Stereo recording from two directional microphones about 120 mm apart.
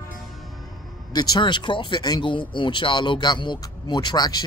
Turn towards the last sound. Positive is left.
turn(degrees=35)  # may be behind; listen again after turning